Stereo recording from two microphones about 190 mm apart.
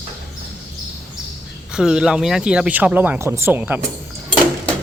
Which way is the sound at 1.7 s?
5° right (ahead or behind).